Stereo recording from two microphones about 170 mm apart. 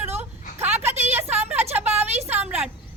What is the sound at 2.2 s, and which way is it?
Speech, 10° right (ahead or behind).